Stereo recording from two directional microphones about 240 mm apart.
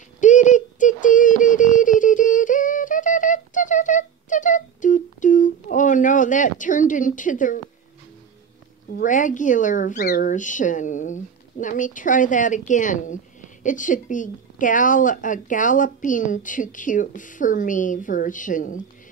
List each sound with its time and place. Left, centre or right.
0.2 s synthetic singing: left
8.9 s speech: left